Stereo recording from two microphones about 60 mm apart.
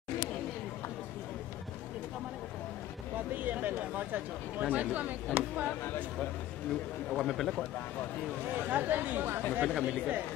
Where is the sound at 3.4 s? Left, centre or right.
Right.